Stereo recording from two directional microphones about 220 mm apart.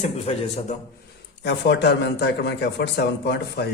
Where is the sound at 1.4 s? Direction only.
50° left (ahead or behind).